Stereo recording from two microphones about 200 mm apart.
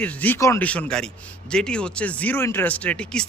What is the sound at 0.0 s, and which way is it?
A man's voice, 5° left (ahead or behind).